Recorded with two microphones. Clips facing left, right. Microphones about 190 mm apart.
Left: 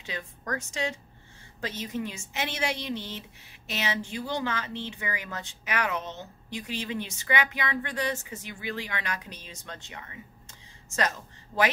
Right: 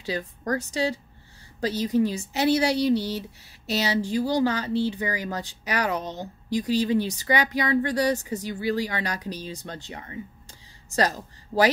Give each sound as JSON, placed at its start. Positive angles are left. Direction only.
{"t": 0.0, "sound": "speech", "side_deg": -35}